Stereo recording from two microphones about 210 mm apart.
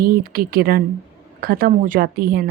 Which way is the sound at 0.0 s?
45° right (ahead or behind).